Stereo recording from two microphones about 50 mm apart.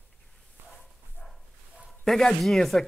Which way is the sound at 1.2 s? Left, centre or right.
Left.